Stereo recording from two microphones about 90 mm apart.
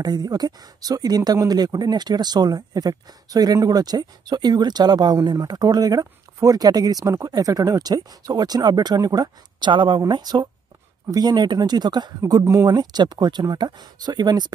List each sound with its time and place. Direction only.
0.0 s speech: 50° right (ahead or behind)
12.2 s speech: 40° right (ahead or behind)
12.6 s speech: 50° right (ahead or behind)